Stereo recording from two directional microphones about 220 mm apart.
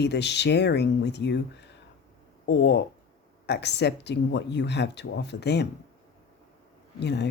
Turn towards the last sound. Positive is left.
turn(degrees=50)  # may be behind; listen again after turning